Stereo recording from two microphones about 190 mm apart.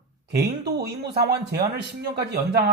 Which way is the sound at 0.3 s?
60° right (ahead or behind).